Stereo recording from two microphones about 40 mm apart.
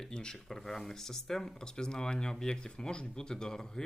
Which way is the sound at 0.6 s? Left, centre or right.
Centre.